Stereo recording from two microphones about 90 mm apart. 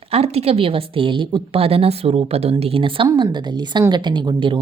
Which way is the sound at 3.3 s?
55° right (ahead or behind).